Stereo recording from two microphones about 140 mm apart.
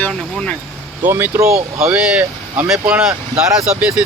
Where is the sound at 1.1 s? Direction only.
20° right (ahead or behind).